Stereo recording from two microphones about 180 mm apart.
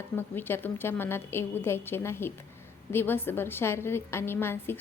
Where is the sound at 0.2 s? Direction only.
10° left (ahead or behind).